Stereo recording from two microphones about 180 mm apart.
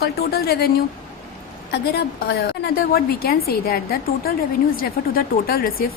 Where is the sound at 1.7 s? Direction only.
65° left (ahead or behind).